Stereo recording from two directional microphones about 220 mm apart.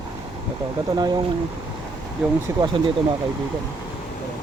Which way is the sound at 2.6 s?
20° right (ahead or behind).